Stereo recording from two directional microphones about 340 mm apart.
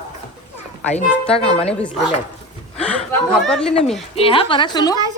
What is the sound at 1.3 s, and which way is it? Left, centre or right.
Speech, centre.